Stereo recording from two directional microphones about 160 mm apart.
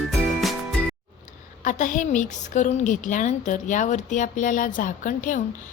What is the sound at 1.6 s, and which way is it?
A woman's voice, 55° left (ahead or behind).